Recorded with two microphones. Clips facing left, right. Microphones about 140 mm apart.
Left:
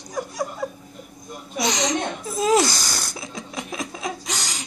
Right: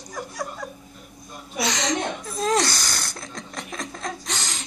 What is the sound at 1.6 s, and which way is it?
Chuckle, 15° left (ahead or behind).